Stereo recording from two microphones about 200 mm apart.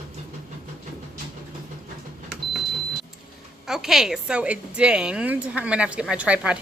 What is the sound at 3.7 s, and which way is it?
A woman's voice, centre (ahead or behind).